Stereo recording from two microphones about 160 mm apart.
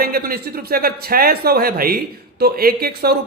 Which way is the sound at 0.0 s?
70° right (ahead or behind).